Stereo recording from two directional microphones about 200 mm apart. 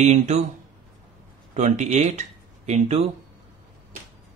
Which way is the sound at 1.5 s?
35° right (ahead or behind).